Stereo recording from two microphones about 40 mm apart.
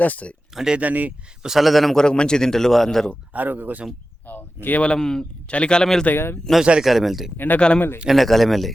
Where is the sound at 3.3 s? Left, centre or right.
Right.